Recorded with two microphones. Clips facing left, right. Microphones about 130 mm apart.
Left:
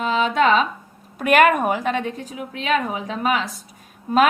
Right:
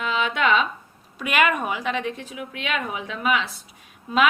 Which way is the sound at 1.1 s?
50° left (ahead or behind).